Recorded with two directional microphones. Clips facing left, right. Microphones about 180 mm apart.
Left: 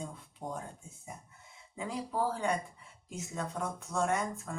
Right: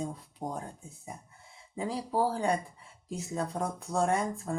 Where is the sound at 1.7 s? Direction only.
35° right (ahead or behind).